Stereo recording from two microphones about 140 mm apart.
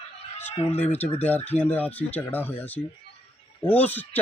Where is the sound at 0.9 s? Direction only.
10° left (ahead or behind).